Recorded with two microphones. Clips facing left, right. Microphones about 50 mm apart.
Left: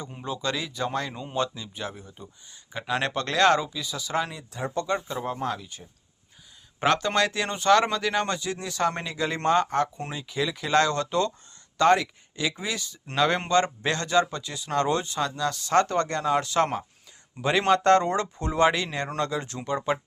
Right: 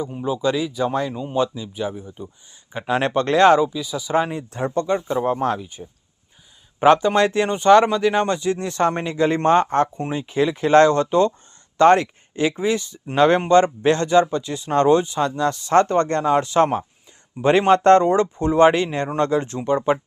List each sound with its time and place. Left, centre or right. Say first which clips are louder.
0.0 s speech: right 9 dB; centre
2.7 s speech: right 7 dB; right
5.5 s speech: right 8 dB; centre
17.7 s speech: right 6 dB; right